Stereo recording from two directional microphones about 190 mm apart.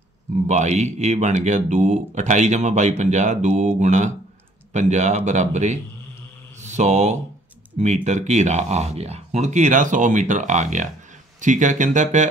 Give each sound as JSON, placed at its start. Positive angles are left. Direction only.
{"t": 0.5, "sound": "speech", "side_deg": -35}